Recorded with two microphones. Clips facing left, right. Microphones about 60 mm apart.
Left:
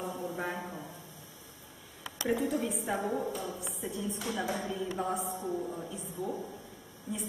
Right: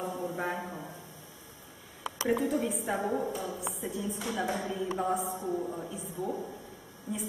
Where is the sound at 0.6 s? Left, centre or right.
Right.